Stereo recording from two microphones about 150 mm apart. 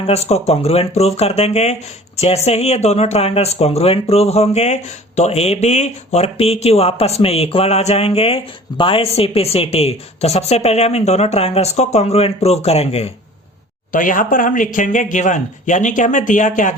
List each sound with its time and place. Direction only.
0.0 s speech: 45° left (ahead or behind)
13.9 s speech: 65° left (ahead or behind)